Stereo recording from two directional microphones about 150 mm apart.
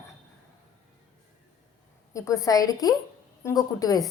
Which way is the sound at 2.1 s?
20° left (ahead or behind).